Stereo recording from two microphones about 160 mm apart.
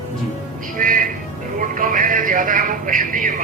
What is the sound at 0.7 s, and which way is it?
Music, 60° right (ahead or behind).